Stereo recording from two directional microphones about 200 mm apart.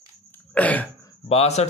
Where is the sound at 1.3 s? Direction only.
30° left (ahead or behind).